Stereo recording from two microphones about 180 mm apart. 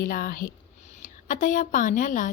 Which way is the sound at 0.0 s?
55° left (ahead or behind).